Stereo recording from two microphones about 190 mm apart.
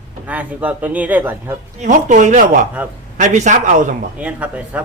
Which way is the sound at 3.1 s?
40° right (ahead or behind).